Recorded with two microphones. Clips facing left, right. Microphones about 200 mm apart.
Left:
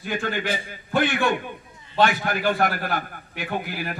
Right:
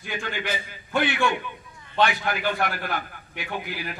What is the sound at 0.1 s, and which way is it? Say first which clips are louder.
A man's voice: left 4 dB; 45° left (ahead or behind).